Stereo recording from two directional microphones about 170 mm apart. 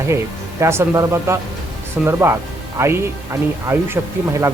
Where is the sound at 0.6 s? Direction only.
15° right (ahead or behind).